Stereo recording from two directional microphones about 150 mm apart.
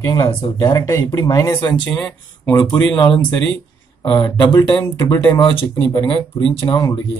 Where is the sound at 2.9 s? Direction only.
30° left (ahead or behind).